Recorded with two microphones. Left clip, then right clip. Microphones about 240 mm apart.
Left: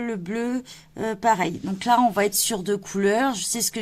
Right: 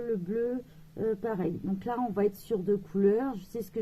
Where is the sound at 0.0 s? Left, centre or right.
Left.